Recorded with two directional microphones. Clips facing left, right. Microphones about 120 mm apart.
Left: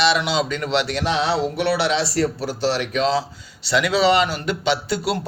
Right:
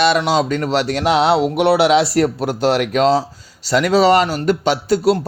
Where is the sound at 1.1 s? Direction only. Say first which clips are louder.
Right 7 dB; 75° right (ahead or behind).